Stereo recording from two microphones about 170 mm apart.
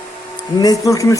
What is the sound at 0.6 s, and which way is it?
Speech, 20° left (ahead or behind).